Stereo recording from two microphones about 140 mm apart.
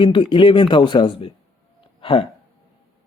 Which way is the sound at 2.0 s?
40° left (ahead or behind).